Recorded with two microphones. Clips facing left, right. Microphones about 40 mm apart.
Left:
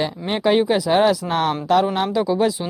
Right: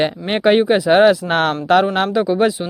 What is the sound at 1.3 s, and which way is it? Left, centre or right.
Speech, right.